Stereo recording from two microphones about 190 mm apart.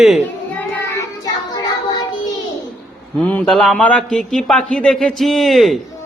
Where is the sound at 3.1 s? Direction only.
5° left (ahead or behind).